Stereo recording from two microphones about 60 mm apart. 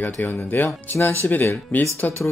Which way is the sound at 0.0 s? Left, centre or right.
Left.